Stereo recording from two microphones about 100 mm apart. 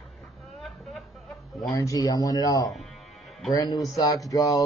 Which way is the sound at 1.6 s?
35° left (ahead or behind).